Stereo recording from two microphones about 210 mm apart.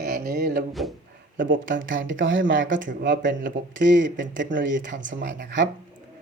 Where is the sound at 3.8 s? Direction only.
60° right (ahead or behind).